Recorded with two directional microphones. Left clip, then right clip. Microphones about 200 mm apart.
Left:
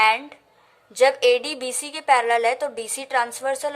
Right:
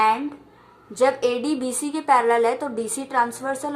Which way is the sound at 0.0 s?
25° left (ahead or behind).